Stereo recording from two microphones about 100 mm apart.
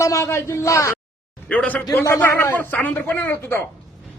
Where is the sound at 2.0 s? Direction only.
25° left (ahead or behind).